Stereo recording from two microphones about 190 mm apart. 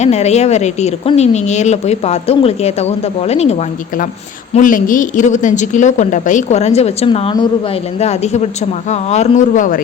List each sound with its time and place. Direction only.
0.0 s speech: 35° left (ahead or behind)
4.5 s speech: 45° left (ahead or behind)